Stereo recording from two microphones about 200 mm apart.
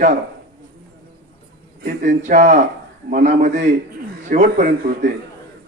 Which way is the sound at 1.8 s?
40° right (ahead or behind).